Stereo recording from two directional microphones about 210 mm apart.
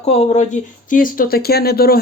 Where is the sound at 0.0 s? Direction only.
30° left (ahead or behind).